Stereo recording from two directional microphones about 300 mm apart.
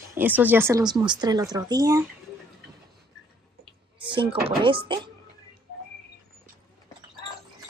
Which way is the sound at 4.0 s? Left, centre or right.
Centre.